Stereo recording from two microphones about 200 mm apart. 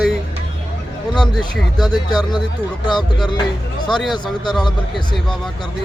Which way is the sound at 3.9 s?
Centre (ahead or behind).